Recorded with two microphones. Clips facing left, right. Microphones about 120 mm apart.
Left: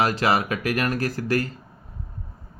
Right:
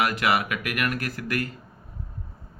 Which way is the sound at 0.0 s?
30° left (ahead or behind).